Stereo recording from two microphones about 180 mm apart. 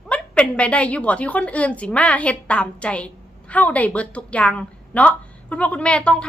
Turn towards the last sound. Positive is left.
turn(degrees=5)  # may be behind; listen again after turning